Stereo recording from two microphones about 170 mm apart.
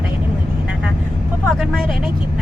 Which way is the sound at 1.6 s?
Centre (ahead or behind).